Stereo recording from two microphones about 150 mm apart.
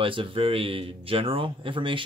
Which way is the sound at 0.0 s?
35° right (ahead or behind).